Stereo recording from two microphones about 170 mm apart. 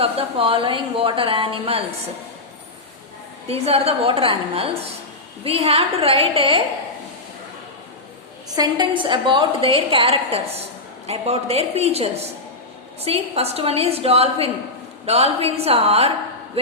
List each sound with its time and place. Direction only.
0.0 s a woman's voice: 30° right (ahead or behind)
3.5 s a woman's voice: 35° right (ahead or behind)
8.4 s a woman's voice: 25° right (ahead or behind)